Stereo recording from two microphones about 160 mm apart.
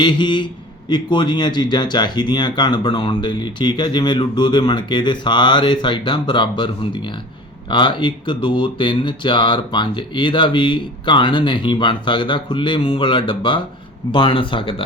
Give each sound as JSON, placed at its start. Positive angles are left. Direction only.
{"t": 0.0, "sound": "speech", "side_deg": 30}